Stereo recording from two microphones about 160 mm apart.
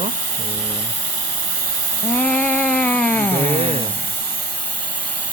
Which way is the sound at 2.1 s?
10° left (ahead or behind).